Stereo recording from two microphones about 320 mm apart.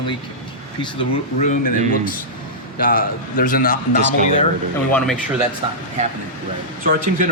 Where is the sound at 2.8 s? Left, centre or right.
Left.